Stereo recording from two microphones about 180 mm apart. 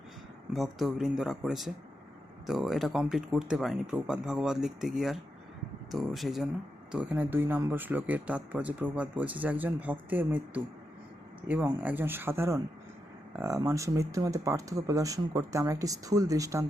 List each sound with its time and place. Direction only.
0.5 s speech: centre (ahead or behind); by 16.6 s 20° right (ahead or behind)